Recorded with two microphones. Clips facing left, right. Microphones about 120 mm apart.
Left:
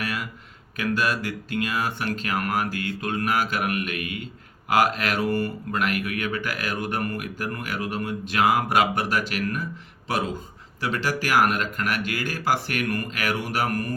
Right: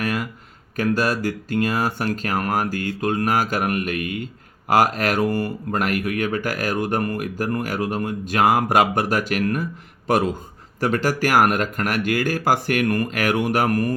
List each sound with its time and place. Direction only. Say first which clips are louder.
0.0 s a sound: right 6 dB; 45° right (ahead or behind)
0.8 s speech: right 4 dB; 40° right (ahead or behind)
10.8 s speech: right 6 dB; 45° right (ahead or behind)